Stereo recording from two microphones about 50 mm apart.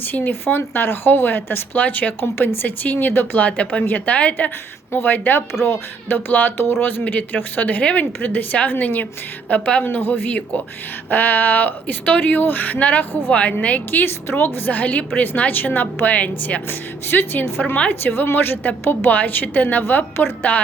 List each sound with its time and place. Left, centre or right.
0.0 s speech: left
3.3 s a woman's voice: left
4.9 s speech: left
7.0 s a woman's voice: left
9.8 s a woman's voice: left
14.3 s speech: left
16.6 s speech: left